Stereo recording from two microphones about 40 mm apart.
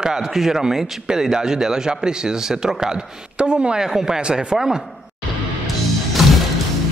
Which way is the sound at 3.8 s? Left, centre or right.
Centre.